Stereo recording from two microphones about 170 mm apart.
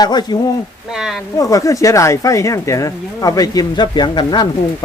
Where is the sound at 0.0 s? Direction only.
25° left (ahead or behind).